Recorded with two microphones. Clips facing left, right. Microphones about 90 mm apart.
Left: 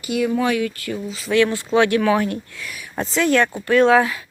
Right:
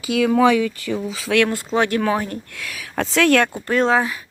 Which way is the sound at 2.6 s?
80° right.